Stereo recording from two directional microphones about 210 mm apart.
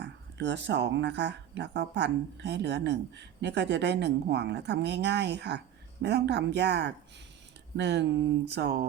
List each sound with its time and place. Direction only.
0.0 s speech: 55° right (ahead or behind)